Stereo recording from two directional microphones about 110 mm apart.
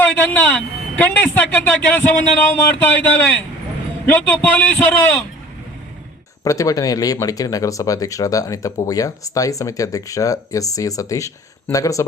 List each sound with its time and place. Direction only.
0.0 s a man's voice: 15° left (ahead or behind)
6.4 s speech: 30° left (ahead or behind)